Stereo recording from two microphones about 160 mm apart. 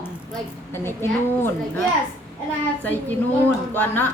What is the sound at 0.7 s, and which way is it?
A woman's voice, 15° left (ahead or behind).